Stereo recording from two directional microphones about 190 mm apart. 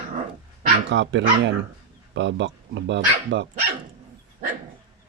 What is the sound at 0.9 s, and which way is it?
Speech, 70° right (ahead or behind).